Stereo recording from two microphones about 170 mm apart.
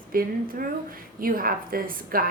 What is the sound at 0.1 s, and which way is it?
A woman's voice, 55° right (ahead or behind).